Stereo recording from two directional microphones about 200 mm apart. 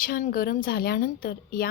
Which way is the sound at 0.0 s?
45° left (ahead or behind).